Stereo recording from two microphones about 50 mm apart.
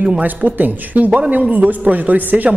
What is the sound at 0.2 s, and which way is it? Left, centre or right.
A man's voice, right.